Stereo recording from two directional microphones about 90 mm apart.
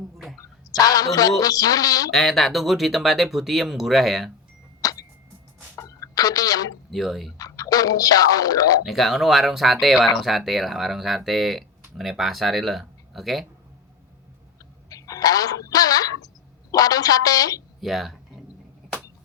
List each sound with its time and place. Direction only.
0.8 s speech: 45° left (ahead or behind)
2.0 s speech: centre (ahead or behind)
4.8 s clock: 45° left (ahead or behind)
5.7 s a sound: 35° left (ahead or behind)
6.9 s speech: centre (ahead or behind)
7.3 s speech: 40° left (ahead or behind)
8.8 s speech: centre (ahead or behind)
14.8 s a sound: 40° left (ahead or behind)
16.7 s speech: 45° left (ahead or behind)
17.7 s speech: centre (ahead or behind)